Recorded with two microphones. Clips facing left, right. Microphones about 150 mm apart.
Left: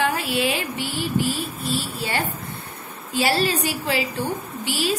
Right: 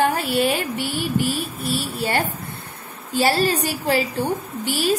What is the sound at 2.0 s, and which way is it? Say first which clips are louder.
A woman's voice: right 3 dB; 35° right (ahead or behind).